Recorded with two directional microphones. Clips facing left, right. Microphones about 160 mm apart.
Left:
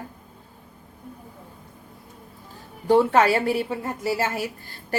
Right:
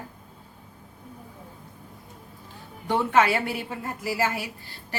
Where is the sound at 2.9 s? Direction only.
35° left (ahead or behind).